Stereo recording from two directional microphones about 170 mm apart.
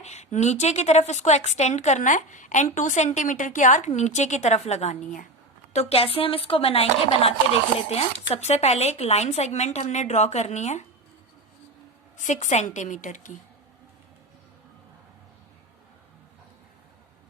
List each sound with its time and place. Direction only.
0.0 s a woman's voice: 40° left (ahead or behind)
12.1 s a woman's voice: 45° left (ahead or behind)